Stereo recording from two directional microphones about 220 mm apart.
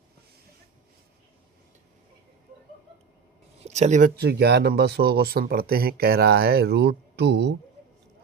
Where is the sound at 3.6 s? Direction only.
30° right (ahead or behind).